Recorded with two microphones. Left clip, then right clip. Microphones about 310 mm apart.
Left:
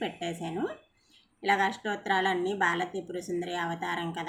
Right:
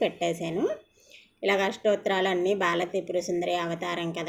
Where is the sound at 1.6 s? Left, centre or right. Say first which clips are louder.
Right 4 dB; left.